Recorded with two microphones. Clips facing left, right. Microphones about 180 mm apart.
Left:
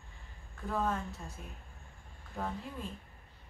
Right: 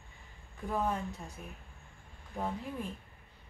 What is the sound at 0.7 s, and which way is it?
Speech, 15° right (ahead or behind).